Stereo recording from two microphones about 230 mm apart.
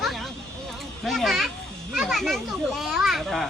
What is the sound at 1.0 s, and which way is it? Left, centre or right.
A child's voice, centre.